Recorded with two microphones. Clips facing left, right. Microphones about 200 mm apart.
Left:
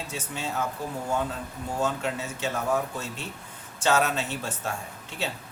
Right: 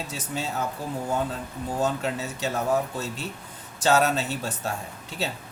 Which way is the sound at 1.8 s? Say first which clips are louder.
Right 2 dB; 35° right (ahead or behind).